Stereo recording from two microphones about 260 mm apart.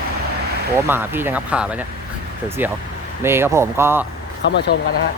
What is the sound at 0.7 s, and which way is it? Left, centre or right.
Speech, centre.